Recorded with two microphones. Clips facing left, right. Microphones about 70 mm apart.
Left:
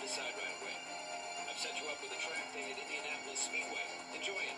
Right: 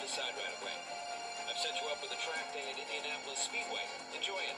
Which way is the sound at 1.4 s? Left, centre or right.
Right.